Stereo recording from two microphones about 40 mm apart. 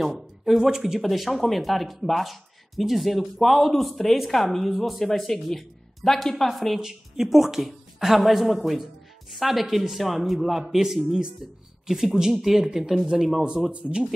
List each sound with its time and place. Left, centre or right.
0.0 s speech: centre
1.0 s speech: centre
6.5 s speech: centre
6.8 s speech: centre
12.2 s a man's voice: centre; by 14.0 s right